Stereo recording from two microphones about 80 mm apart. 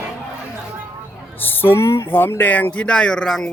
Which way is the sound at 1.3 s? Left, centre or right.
Left.